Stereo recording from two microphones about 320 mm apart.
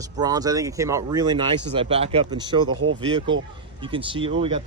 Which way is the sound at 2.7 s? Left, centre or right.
Right.